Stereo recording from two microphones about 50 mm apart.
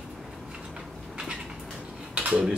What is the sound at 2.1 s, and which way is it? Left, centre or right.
Dishes, right.